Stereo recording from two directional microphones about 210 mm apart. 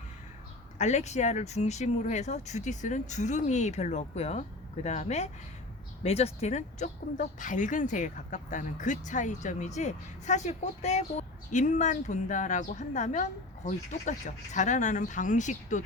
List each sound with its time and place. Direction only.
0.8 s speech: 35° left (ahead or behind)